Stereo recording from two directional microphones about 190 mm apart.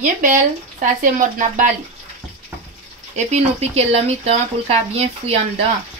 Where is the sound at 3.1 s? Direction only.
35° right (ahead or behind).